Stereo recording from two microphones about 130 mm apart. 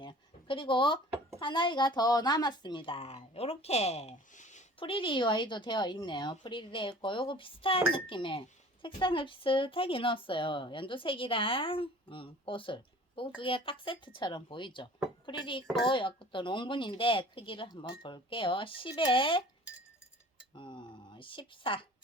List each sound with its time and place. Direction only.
0.0 s a sound: 40° left (ahead or behind)
1.4 s speech: 40° left (ahead or behind); by 4.6 s 65° left (ahead or behind)
4.8 s speech: 40° left (ahead or behind)
20.6 s speech: 40° left (ahead or behind)